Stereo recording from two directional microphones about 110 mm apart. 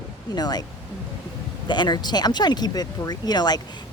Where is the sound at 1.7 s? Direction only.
40° left (ahead or behind).